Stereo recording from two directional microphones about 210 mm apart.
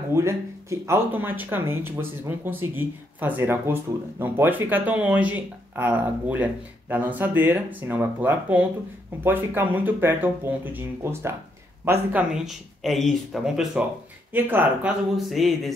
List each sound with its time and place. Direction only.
0.1 s speech: 15° right (ahead or behind)